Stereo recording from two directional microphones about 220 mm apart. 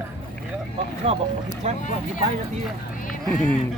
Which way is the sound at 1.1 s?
25° right (ahead or behind).